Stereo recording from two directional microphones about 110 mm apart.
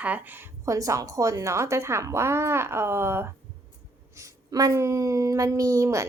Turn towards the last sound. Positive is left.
turn(degrees=-30)  # may be behind; listen again after turning